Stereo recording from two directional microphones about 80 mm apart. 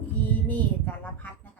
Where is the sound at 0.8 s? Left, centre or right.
Left.